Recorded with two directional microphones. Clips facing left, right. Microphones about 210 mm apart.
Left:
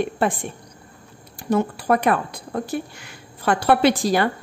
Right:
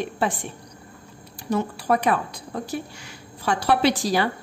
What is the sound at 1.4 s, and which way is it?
A woman's voice, 55° left (ahead or behind).